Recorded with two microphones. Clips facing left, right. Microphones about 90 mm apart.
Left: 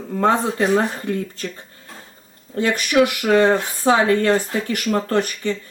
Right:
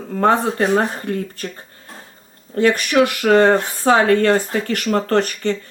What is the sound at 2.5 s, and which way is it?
Speech, 50° right (ahead or behind).